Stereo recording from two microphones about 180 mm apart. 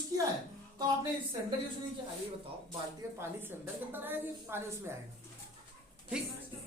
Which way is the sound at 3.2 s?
15° right (ahead or behind).